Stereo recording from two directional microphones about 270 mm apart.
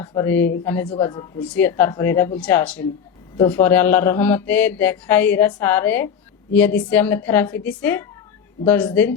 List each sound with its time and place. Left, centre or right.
0.0 s mantra: centre
1.4 s mantra: centre
2.4 s speech: centre
3.5 s mantra: centre